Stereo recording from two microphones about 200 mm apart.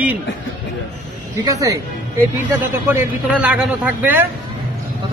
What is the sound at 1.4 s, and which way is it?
A man's voice, 15° right (ahead or behind).